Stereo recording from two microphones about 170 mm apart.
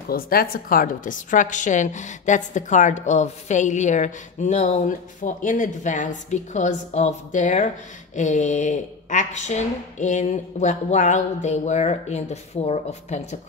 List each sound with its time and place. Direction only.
0.1 s a woman's voice: 60° left (ahead or behind); by 13.4 s 40° left (ahead or behind)